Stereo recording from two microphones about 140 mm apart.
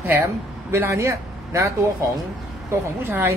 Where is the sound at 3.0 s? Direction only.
15° right (ahead or behind).